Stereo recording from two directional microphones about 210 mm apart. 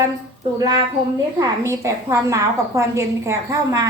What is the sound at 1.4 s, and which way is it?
A woman's voice, 15° right (ahead or behind).